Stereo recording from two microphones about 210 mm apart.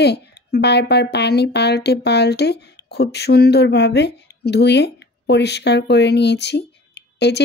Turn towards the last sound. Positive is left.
turn(degrees=55)  # may be behind; listen again after turning